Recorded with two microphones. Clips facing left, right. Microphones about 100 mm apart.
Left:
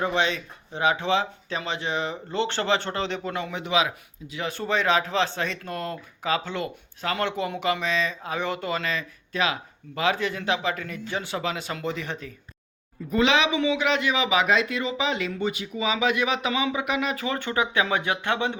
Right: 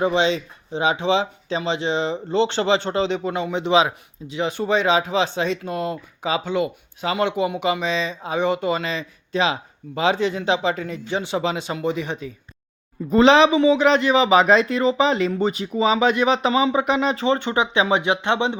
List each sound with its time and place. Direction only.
0.0 s speech: 20° right (ahead or behind)
13.1 s a man's voice: 35° right (ahead or behind)